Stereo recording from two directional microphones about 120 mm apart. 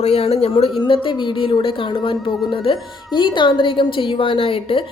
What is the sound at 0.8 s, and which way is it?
Speech, 40° left (ahead or behind).